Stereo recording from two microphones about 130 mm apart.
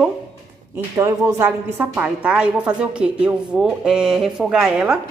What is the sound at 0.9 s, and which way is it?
A woman's voice, 20° right (ahead or behind).